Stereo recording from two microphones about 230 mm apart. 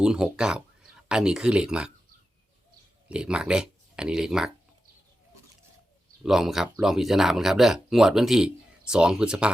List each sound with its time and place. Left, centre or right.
0.0 s speech: centre
3.1 s speech: centre
6.2 s speech: centre